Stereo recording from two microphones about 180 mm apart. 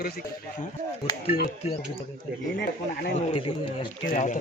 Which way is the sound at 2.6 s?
60° left (ahead or behind).